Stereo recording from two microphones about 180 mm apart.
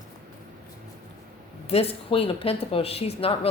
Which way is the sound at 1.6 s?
35° left (ahead or behind).